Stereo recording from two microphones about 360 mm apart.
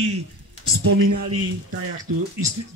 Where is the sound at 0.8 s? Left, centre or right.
Right.